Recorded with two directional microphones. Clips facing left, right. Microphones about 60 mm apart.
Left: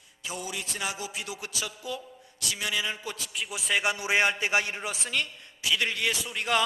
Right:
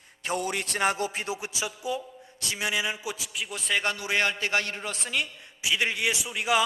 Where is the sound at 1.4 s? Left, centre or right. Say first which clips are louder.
Right 3 dB; right; by 3.9 s centre.